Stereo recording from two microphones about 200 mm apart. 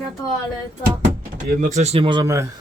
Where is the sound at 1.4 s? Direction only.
40° right (ahead or behind); by 2.4 s 15° right (ahead or behind).